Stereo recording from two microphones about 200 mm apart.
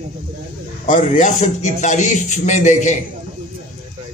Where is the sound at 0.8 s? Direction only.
40° left (ahead or behind).